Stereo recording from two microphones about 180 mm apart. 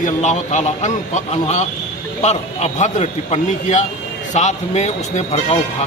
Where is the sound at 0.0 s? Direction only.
40° left (ahead or behind).